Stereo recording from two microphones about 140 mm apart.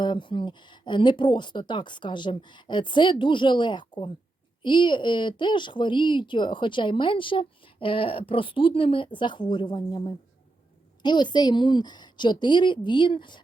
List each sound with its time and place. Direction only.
0.0 s speech: 35° left (ahead or behind)